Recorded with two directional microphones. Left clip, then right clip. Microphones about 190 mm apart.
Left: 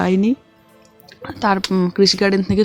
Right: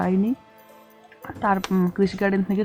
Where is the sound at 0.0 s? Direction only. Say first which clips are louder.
Left 6 dB; 30° left (ahead or behind).